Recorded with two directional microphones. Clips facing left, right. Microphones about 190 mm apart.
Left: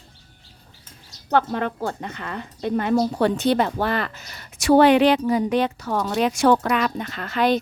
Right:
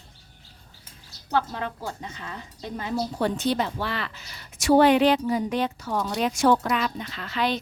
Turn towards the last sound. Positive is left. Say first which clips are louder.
# left 6 dB
turn(degrees=50)  # may be behind; listen again after turning